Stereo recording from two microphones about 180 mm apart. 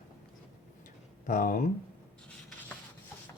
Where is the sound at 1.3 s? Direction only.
50° left (ahead or behind).